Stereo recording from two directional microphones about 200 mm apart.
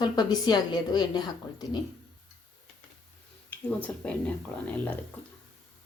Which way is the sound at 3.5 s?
5° left (ahead or behind).